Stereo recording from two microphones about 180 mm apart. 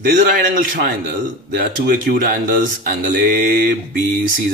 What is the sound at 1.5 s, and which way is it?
Speech, 60° right (ahead or behind).